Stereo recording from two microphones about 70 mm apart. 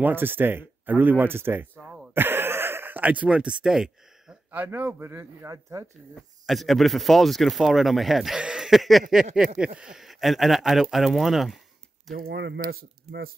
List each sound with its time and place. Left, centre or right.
0.0 s speech: right
1.8 s throat clearing: centre
2.1 s a sound: right; by 4.4 s centre
4.6 s speech: right
5.5 s speech: right
6.4 s a sound: centre
12.1 s speech: centre